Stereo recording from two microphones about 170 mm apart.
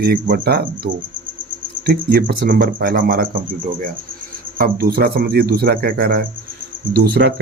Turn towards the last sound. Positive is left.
turn(degrees=-75)  # may be behind; listen again after turning